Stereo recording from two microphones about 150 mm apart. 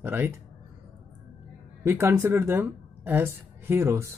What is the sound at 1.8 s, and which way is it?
Speech, 15° right (ahead or behind).